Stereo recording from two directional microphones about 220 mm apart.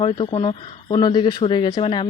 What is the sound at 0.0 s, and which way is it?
Speech, 25° left (ahead or behind).